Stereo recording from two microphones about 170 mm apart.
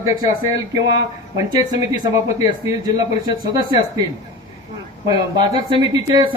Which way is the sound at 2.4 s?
20° right (ahead or behind).